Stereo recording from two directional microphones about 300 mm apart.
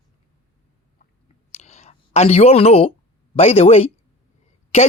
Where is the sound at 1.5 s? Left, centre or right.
Left.